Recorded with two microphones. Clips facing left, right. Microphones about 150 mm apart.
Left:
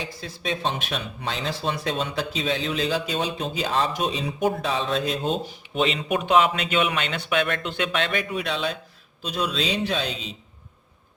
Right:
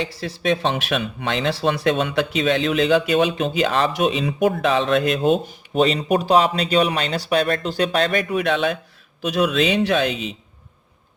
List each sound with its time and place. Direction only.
0.0 s speech: 80° right
5.7 s a man's voice: 40° right (ahead or behind); by 10.3 s 65° right (ahead or behind)